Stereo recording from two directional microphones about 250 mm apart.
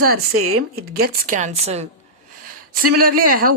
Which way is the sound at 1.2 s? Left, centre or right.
Right.